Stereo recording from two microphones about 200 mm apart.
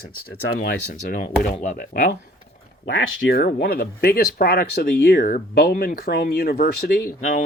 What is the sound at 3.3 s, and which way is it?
Speech, 50° left (ahead or behind).